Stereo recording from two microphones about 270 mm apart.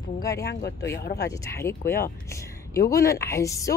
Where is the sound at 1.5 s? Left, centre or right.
Centre.